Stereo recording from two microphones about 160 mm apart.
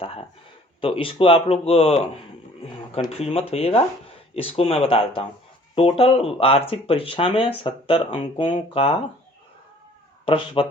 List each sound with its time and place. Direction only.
0.0 s speech: 35° left (ahead or behind)
3.1 s speech: 40° left (ahead or behind)
10.2 s speech: 35° left (ahead or behind)